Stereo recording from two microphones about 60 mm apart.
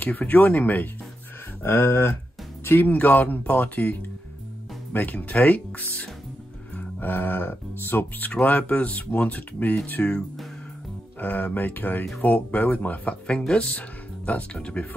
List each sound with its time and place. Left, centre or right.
0.0 s speech: left
1.6 s a sound: left
2.6 s speech: left
8.2 s speech: left
11.1 s speech: left